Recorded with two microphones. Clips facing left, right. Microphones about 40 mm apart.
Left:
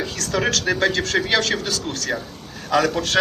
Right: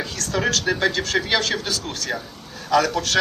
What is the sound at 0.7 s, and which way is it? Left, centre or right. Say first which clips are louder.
Speech: left 1 dB; left.